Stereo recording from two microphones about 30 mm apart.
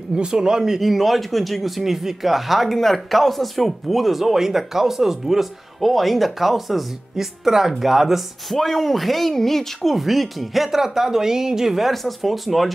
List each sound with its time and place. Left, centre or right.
0.1 s speech: right
0.7 s speech: centre
2.7 s a woman's voice: centre
8.5 s speech: centre
9.9 s speech: centre
10.8 s a woman's voice: centre
11.9 s speech: centre